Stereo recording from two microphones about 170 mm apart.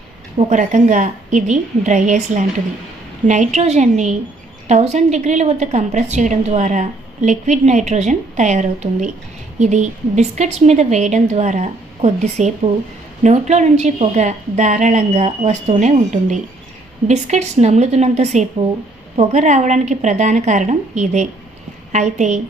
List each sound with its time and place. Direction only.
0.3 s a woman's voice: 45° right (ahead or behind)